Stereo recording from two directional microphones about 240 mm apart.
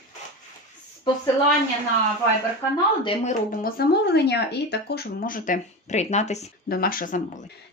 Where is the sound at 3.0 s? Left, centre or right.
Left.